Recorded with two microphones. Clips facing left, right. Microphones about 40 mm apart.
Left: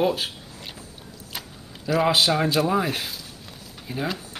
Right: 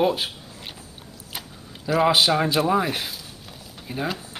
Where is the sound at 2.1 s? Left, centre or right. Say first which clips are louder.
Right 1 dB; centre.